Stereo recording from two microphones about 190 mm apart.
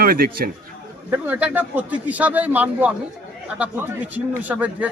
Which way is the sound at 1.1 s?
10° right (ahead or behind).